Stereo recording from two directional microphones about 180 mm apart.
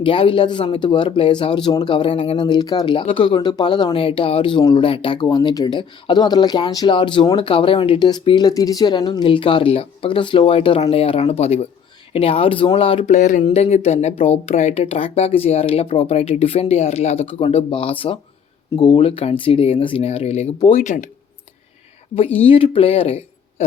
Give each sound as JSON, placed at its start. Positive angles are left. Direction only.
{"t": 0.0, "sound": "speech", "side_deg": 30}
{"t": 22.1, "sound": "speech", "side_deg": 30}